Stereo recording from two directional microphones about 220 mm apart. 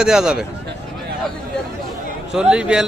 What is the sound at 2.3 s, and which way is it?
Speech, 5° right (ahead or behind).